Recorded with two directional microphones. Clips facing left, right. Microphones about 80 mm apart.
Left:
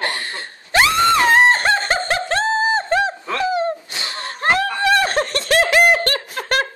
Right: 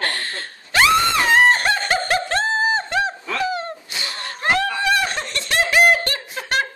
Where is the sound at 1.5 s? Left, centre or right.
Left.